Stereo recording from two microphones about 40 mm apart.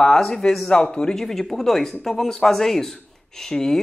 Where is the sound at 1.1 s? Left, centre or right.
Centre.